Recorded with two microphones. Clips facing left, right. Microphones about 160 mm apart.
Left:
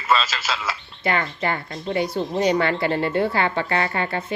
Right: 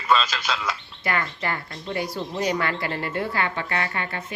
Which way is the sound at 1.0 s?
25° left (ahead or behind).